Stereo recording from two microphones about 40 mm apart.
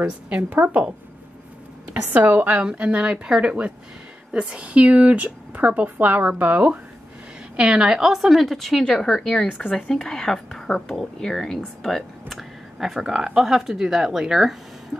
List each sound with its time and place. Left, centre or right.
2.0 s speech: right
2.6 s speech: right
3.1 s speech: right
7.5 s speech: centre
8.0 s speech: centre
8.5 s speech: centre
12.7 s speech: centre